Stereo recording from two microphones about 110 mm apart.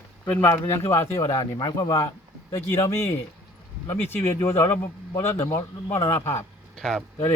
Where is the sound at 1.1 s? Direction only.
35° left (ahead or behind).